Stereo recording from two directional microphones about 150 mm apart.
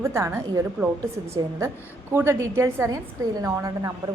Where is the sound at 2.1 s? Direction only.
15° right (ahead or behind).